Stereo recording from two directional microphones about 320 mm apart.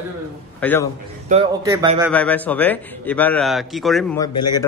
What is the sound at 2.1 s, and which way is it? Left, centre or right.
A man's voice, centre.